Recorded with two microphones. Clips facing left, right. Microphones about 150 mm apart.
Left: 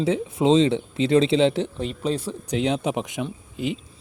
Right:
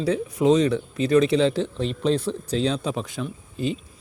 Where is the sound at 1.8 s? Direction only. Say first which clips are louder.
Right 3 dB; 5° left (ahead or behind).